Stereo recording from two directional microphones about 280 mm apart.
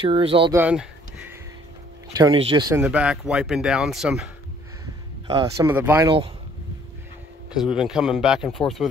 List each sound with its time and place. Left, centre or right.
0.0 s speech: centre
0.6 s a sound: centre
2.1 s speech: centre
5.3 s speech: centre
7.5 s speech: centre